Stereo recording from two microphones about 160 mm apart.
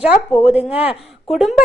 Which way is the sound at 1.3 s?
Centre (ahead or behind).